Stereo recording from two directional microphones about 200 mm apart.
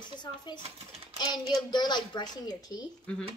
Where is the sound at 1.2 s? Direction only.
20° left (ahead or behind).